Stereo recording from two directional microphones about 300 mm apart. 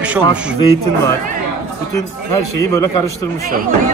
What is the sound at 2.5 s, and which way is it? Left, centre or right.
Speech, centre.